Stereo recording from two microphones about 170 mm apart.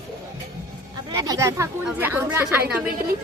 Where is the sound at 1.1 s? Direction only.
20° right (ahead or behind).